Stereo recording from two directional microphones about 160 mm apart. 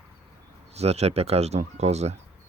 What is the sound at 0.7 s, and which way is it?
Speech, 40° right (ahead or behind).